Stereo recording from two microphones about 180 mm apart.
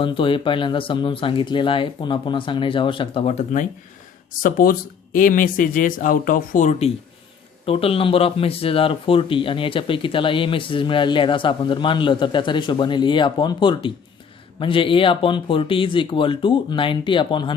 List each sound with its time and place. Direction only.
0.0 s speech: 30° left (ahead or behind)